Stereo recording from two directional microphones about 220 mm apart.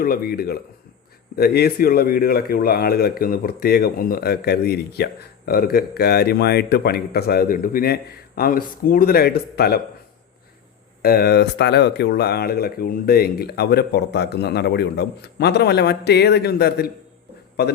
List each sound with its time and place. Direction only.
0.0 s speech: 40° left (ahead or behind)
11.0 s speech: 45° left (ahead or behind)